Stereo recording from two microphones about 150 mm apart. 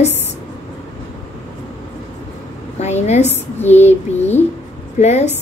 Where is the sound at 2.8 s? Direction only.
50° left (ahead or behind).